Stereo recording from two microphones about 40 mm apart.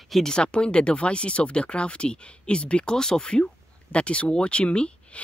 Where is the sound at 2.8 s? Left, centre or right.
Centre.